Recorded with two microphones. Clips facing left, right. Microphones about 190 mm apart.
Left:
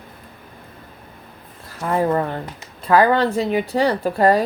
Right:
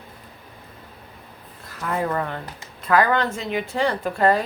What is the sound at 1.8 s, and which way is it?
Speech, 30° left (ahead or behind).